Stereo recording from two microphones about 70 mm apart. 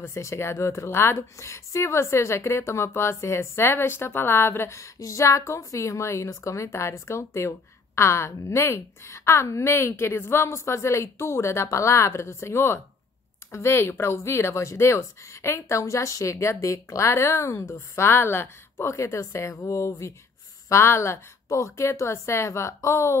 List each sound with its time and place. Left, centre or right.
0.0 s speech: left